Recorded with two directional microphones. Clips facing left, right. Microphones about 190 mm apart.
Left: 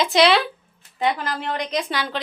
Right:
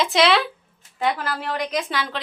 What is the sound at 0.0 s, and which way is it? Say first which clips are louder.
A woman's voice: left 2 dB; centre (ahead or behind).